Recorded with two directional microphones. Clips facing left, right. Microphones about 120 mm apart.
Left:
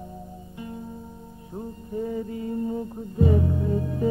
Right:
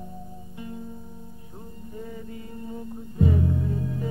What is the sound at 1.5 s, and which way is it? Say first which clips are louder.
Music: left 9 dB; 35° left (ahead or behind).